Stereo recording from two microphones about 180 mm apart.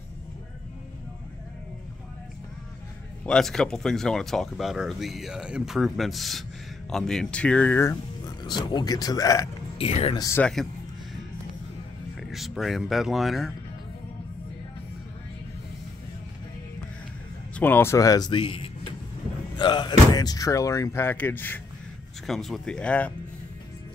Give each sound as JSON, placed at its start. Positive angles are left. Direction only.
{"t": 3.3, "sound": "speech", "side_deg": 5}
{"t": 9.8, "sound": "speech", "side_deg": 30}
{"t": 10.2, "sound": "speech", "side_deg": 15}
{"t": 12.2, "sound": "speech", "side_deg": 0}
{"t": 17.6, "sound": "speech", "side_deg": 10}